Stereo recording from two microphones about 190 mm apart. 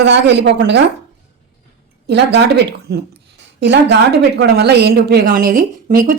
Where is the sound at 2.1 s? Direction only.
65° right (ahead or behind).